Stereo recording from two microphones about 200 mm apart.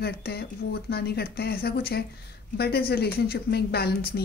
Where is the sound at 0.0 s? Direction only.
50° left (ahead or behind).